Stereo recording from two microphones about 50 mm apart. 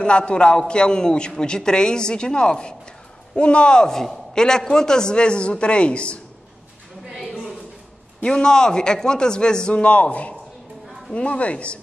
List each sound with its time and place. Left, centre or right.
0.0 s a man's voice: left
8.2 s a man's voice: centre